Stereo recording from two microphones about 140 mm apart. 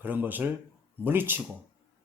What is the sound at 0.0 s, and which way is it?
Speech, 15° right (ahead or behind).